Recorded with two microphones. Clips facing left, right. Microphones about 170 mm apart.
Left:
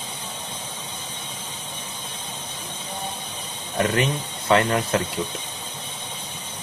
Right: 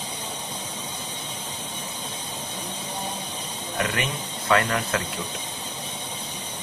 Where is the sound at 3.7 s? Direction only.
30° left (ahead or behind).